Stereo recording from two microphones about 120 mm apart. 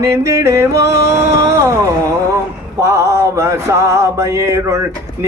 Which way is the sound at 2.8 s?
25° right (ahead or behind).